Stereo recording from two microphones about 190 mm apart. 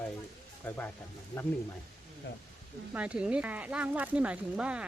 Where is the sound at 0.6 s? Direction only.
10° left (ahead or behind).